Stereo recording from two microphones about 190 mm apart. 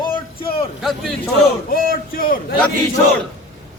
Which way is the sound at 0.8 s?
Centre (ahead or behind).